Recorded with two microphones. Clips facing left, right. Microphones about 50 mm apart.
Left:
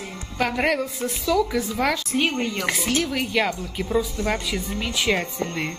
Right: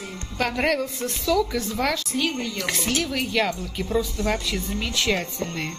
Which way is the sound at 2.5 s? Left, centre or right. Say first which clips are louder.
Left 2 dB; centre.